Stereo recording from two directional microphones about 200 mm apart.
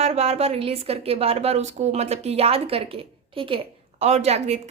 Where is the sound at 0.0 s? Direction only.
30° right (ahead or behind).